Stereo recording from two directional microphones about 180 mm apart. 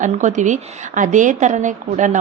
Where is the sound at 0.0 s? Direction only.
45° right (ahead or behind).